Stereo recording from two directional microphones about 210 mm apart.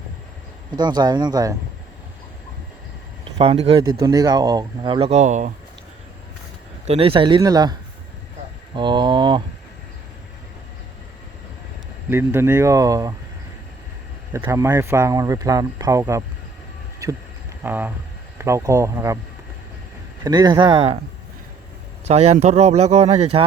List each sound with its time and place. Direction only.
0.7 s speech: 20° right (ahead or behind)
3.3 s speech: 25° right (ahead or behind)
6.8 s speech: 30° right (ahead or behind)
12.0 s speech: 10° right (ahead or behind)
14.3 s speech: 15° right (ahead or behind)
17.6 s speech: 10° right (ahead or behind)
20.2 s speech: 20° right (ahead or behind)
22.0 s speech: 30° right (ahead or behind)